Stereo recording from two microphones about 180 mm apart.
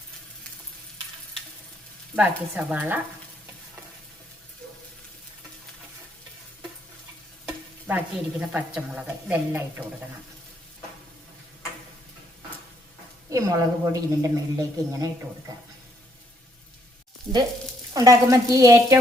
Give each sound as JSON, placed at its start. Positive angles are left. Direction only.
{"t": 2.1, "sound": "speech", "side_deg": -10}
{"t": 7.4, "sound": "stir", "side_deg": -10}
{"t": 13.3, "sound": "a woman's voice", "side_deg": -20}
{"t": 17.9, "sound": "a woman's voice", "side_deg": -20}